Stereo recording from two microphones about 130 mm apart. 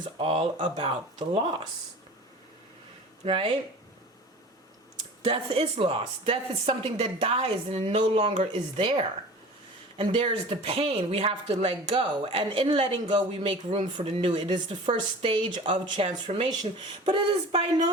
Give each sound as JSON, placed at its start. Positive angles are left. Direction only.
{"t": 0.0, "sound": "speech", "side_deg": -45}
{"t": 3.2, "sound": "speech", "side_deg": -40}
{"t": 5.3, "sound": "a woman's voice", "side_deg": -45}